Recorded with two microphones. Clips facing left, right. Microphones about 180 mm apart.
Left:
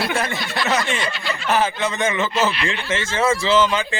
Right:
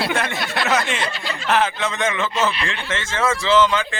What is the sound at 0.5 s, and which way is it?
A man's voice, 5° left (ahead or behind).